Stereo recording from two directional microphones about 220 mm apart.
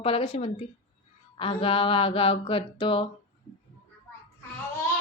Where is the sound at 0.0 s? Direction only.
25° left (ahead or behind).